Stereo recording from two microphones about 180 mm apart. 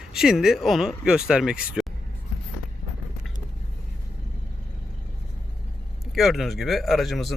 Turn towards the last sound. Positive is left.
turn(degrees=0)  # may be behind; listen again after turning